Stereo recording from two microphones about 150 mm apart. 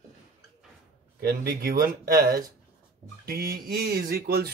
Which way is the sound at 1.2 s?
90° right.